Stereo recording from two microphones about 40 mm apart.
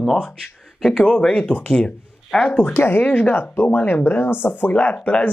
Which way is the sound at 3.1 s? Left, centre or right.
Left.